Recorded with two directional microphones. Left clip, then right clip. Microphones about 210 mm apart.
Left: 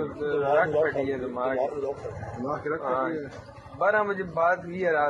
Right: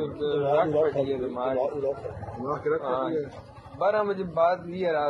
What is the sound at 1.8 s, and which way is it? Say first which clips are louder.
Speech: right 2 dB; 20° right (ahead or behind).